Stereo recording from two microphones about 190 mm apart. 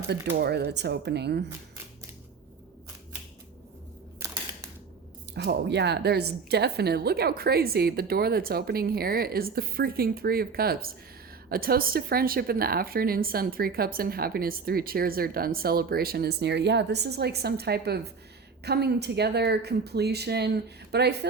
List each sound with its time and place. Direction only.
0.3 s speech: 55° right (ahead or behind)
4.2 s scissors: 15° right (ahead or behind)
5.3 s a woman's voice: 60° right (ahead or behind)